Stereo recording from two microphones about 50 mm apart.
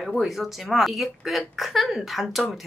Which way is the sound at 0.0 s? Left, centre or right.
Centre.